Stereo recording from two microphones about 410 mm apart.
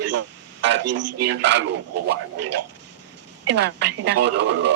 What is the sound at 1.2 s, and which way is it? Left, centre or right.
Speech, right.